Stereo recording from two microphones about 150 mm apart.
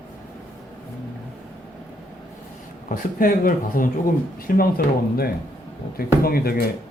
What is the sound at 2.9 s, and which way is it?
A man's voice, 65° left (ahead or behind).